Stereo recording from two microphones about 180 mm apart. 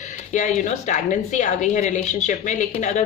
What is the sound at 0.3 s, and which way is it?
A woman's voice, 45° left (ahead or behind).